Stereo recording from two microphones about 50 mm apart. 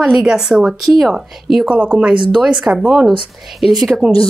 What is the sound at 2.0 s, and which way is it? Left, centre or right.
Speech, centre.